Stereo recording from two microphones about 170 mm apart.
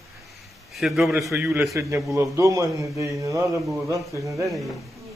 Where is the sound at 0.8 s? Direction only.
Centre (ahead or behind).